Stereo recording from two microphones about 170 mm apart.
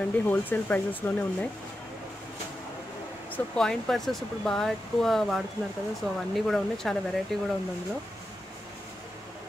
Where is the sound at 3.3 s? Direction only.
5° left (ahead or behind).